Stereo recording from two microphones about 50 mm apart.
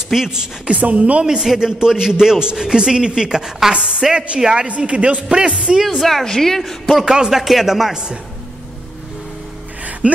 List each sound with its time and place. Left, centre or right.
0.1 s a man's voice: centre
6.0 s a woman's voice: centre
7.1 s a man's voice: centre
10.0 s speech: right